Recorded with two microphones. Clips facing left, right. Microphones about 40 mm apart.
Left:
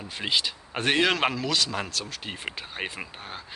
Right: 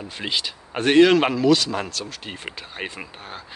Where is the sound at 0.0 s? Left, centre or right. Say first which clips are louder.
Right 1 dB; centre.